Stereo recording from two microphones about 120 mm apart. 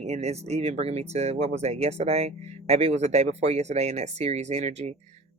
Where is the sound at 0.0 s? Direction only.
65° right (ahead or behind).